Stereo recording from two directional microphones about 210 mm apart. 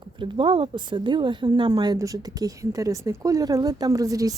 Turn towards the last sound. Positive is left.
turn(degrees=-15)  # may be behind; listen again after turning